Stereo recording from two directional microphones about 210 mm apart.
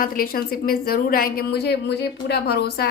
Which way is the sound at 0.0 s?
45° left (ahead or behind).